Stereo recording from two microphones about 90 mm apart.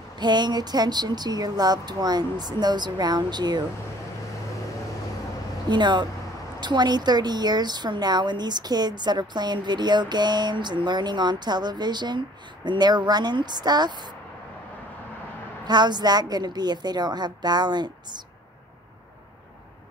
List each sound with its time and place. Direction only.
0.2 s a woman's voice: 55° right (ahead or behind)
5.7 s a woman's voice: 55° right (ahead or behind)
15.6 s a woman's voice: 50° right (ahead or behind)